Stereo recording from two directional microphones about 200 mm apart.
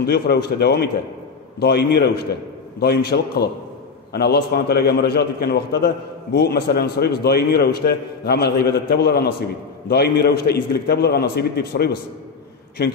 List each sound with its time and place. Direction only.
0.0 s a man's voice: 50° left (ahead or behind)